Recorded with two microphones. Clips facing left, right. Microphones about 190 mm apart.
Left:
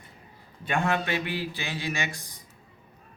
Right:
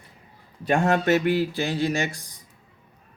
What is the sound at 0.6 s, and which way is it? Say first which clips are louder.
Speech: right 7 dB; 45° right (ahead or behind).